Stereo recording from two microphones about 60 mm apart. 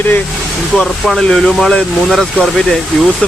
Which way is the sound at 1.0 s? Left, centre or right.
Centre.